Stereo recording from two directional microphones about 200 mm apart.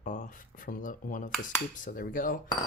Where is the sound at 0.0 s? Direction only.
40° left (ahead or behind).